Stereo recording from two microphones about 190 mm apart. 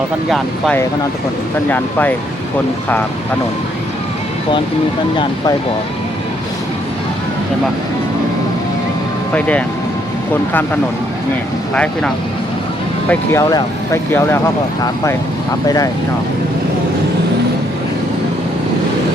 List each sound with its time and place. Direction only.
0.3 s speech: centre (ahead or behind)
9.3 s speech: 5° left (ahead or behind)
11.7 s speech: 5° left (ahead or behind)
13.1 s speech: 15° left (ahead or behind)
15.6 s speech: 20° left (ahead or behind)